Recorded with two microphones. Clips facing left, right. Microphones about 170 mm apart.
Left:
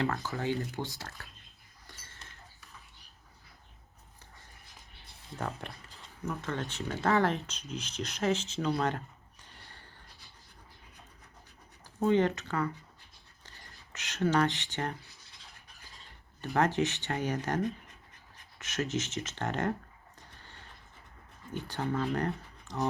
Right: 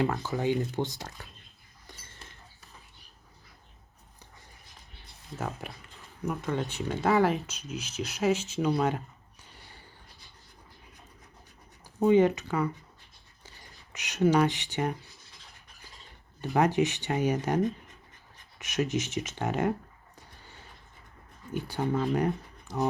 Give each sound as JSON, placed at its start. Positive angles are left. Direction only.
{"t": 0.0, "sound": "speech", "side_deg": -15}
{"t": 1.9, "sound": "a sound", "side_deg": -15}
{"t": 5.4, "sound": "speech", "side_deg": -5}
{"t": 11.9, "sound": "speech", "side_deg": -15}
{"t": 13.9, "sound": "speech", "side_deg": -15}
{"t": 16.4, "sound": "speech", "side_deg": -10}
{"t": 20.1, "sound": "a sound", "side_deg": -10}
{"t": 21.5, "sound": "speech", "side_deg": -10}